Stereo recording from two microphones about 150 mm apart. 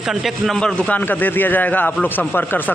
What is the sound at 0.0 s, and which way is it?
Speech, centre (ahead or behind).